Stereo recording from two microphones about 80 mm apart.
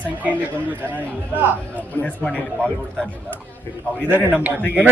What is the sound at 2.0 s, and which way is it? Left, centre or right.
Speech, centre.